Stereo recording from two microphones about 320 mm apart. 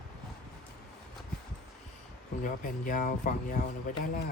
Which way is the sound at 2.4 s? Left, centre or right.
Left.